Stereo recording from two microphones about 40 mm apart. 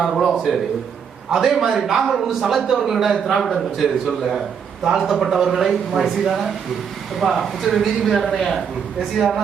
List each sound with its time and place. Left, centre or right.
0.0 s speech: centre
0.5 s a man's voice: centre